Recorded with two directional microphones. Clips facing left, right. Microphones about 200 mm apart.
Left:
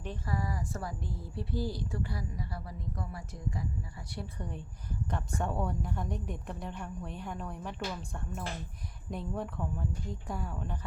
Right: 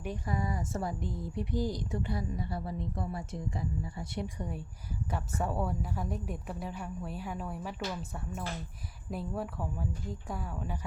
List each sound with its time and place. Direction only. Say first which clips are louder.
0.0 s a woman's voice: right 2 dB; 15° right (ahead or behind)
4.4 s a woman's voice: right 2 dB; 10° right (ahead or behind)